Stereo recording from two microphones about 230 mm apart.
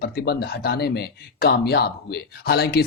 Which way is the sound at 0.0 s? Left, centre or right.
Left.